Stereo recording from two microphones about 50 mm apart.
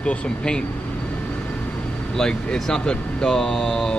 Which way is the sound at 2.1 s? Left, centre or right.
Centre.